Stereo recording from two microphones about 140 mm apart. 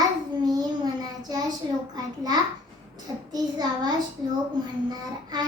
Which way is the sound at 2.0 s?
30° right (ahead or behind).